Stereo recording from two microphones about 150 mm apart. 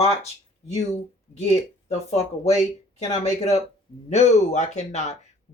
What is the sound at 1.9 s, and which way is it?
Speech, 45° left (ahead or behind).